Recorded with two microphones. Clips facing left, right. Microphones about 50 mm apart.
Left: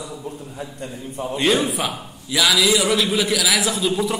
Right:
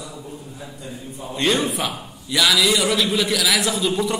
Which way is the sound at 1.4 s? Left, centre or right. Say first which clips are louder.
Left 1 dB; centre.